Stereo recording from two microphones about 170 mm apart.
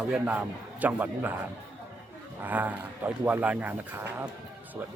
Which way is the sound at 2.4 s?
10° right (ahead or behind).